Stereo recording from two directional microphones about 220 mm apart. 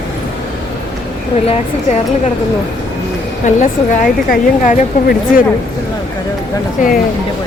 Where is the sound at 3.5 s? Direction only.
35° left (ahead or behind).